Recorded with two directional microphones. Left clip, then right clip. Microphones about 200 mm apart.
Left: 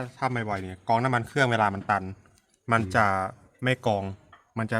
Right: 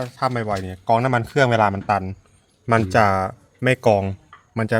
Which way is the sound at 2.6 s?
30° right (ahead or behind).